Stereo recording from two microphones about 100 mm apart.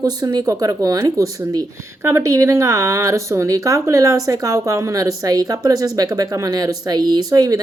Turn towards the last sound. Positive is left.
turn(degrees=-40)  # may be behind; listen again after turning